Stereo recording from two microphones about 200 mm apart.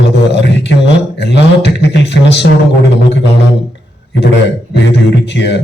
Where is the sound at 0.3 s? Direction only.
60° left (ahead or behind).